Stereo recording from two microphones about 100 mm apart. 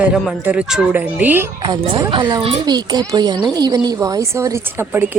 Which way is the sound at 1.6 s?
40° right (ahead or behind).